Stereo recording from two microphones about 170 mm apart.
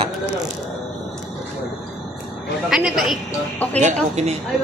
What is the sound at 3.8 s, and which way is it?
Speech, 40° right (ahead or behind).